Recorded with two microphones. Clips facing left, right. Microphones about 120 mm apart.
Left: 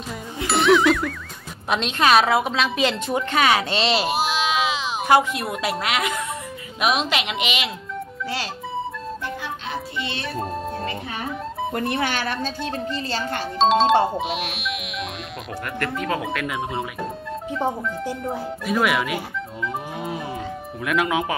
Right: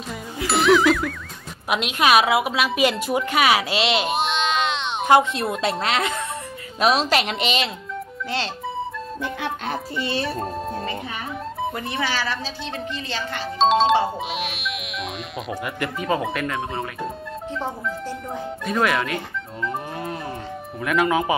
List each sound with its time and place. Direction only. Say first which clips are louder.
0.5 s music: even; centre (ahead or behind)
1.7 s a woman's voice: even; 10° right (ahead or behind)
5.0 s speech: right 2 dB; 25° right (ahead or behind)
9.9 s speech: right 4 dB; 35° right (ahead or behind)
10.3 s speech: even; centre (ahead or behind)
11.7 s speech: left 2 dB; 55° left (ahead or behind)
13.6 s speech: even; centre (ahead or behind)
18.2 s speech: left 2 dB; 5° left (ahead or behind)